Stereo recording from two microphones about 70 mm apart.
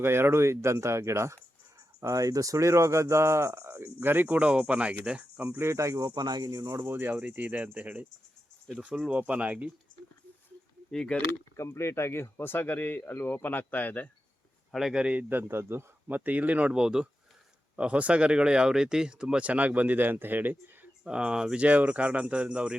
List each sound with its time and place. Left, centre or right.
0.0 s speech: right
2.0 s speech: right
3.8 s speech: right
5.5 s speech: right
6.1 s speech: right
6.8 s speech: right
10.9 s speech: centre
11.5 s speech: left
14.7 s speech: centre
15.1 s speech: right
21.0 s speech: centre